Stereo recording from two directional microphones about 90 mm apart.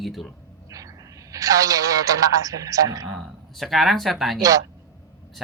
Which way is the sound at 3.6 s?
Centre (ahead or behind).